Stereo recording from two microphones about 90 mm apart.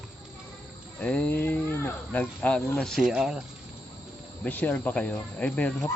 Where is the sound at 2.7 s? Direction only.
5° left (ahead or behind).